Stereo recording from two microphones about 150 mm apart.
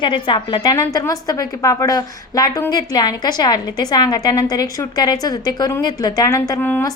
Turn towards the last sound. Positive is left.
turn(degrees=15)  # may be behind; listen again after turning